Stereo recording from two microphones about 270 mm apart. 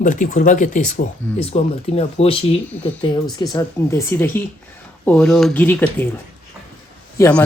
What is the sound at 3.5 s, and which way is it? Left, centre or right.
Speech, centre.